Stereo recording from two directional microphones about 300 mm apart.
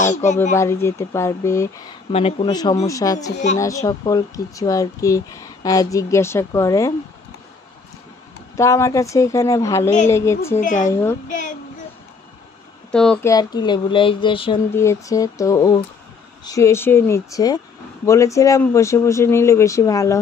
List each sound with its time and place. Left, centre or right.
0.0 s speech: left
0.6 s speech: centre
2.1 s speech: centre
8.5 s speech: centre
11.2 s a child's voice: left
12.9 s speech: centre